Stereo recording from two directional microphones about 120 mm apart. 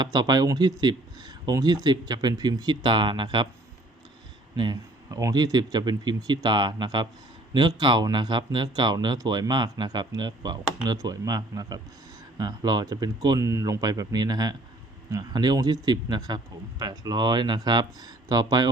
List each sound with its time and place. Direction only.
0.0 s speech: 35° right (ahead or behind)
4.5 s speech: 35° right (ahead or behind)